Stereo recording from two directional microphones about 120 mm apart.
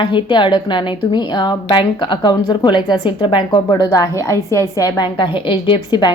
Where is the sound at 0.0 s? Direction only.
40° left (ahead or behind); by 4.9 s 25° left (ahead or behind).